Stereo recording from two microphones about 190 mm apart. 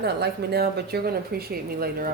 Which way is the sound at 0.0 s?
60° right (ahead or behind).